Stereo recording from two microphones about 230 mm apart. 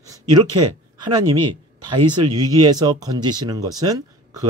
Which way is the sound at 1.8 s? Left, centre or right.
Centre.